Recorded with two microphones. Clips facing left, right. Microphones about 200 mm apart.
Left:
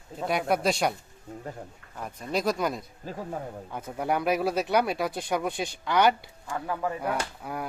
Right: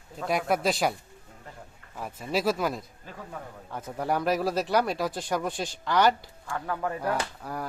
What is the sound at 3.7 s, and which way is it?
Speech, centre (ahead or behind).